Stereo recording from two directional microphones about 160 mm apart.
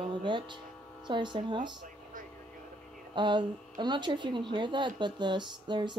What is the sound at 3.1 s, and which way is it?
A woman's voice, 30° right (ahead or behind).